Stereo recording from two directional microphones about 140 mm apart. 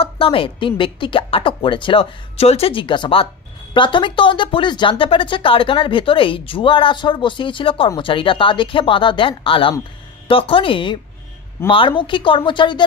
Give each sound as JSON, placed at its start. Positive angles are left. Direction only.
{"t": 0.0, "sound": "speech", "side_deg": 40}